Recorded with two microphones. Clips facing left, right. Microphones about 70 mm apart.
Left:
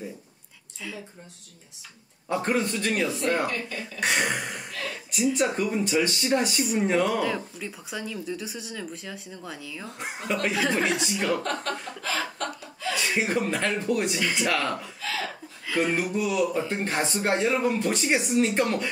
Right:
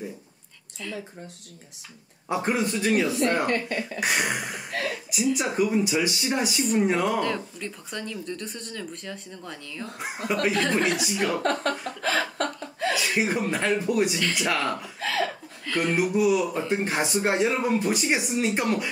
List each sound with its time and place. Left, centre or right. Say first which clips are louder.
0.8 s speech: right 3 dB; centre
2.2 s speech: even; centre
3.4 s speech: right 5 dB; right
4.0 s speech: left 2 dB; centre
4.6 s a woman's voice: right 5 dB; right
5.1 s speech: left 1 dB; centre
12.0 s chuckle: right 6 dB; right
12.9 s speech: left 1 dB; centre
14.2 s speech: even; centre
14.5 s speech: even; centre
15.0 s a sound: right 5 dB; right
15.6 s speech: even; centre
16.0 s speech: right 3 dB; centre